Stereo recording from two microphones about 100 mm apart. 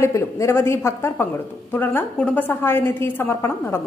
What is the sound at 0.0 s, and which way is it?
A woman's voice, 30° left (ahead or behind).